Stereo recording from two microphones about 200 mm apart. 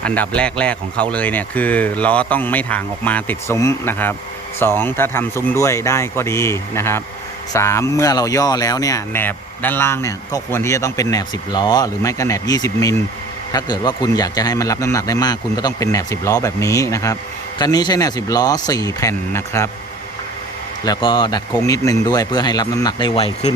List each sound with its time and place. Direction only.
0.0 s speech: 5° left (ahead or behind)
20.8 s speech: 20° left (ahead or behind)